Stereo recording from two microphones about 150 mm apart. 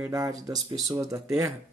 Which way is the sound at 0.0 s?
20° right (ahead or behind).